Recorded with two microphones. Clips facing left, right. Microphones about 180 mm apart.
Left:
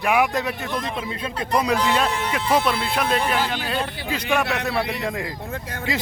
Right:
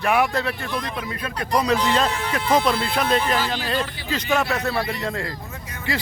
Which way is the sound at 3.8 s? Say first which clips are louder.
Even; 60° left (ahead or behind).